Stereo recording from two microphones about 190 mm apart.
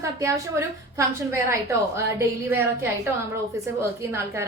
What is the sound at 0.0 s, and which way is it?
A woman's voice, 15° right (ahead or behind).